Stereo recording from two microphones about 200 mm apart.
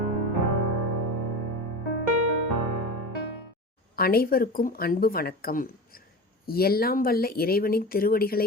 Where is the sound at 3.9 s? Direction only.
50° left (ahead or behind).